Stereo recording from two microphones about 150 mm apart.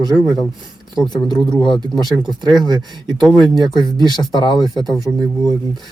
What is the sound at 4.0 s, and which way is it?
Speech, 30° left (ahead or behind).